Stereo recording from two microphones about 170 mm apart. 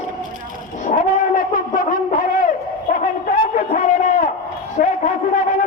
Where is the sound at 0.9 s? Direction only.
50° left (ahead or behind).